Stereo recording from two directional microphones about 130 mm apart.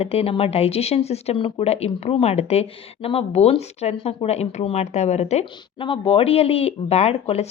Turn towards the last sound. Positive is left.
turn(degrees=55)  # may be behind; listen again after turning